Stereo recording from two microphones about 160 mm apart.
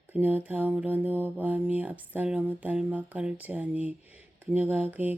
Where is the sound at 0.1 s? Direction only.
10° right (ahead or behind).